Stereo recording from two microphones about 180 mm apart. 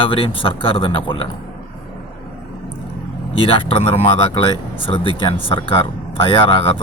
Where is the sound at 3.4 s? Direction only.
30° left (ahead or behind).